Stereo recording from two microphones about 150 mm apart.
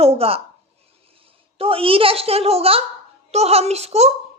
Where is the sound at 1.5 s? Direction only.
40° right (ahead or behind).